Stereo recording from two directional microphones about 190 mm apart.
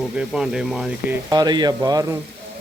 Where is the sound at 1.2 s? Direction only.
20° right (ahead or behind).